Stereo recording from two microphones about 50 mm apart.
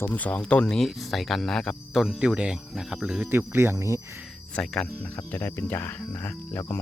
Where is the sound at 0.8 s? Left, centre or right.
Centre.